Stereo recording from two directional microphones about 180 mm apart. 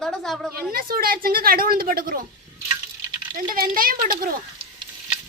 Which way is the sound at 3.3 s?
50° right (ahead or behind).